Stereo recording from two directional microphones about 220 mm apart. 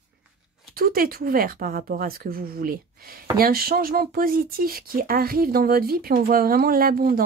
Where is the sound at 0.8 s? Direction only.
40° right (ahead or behind).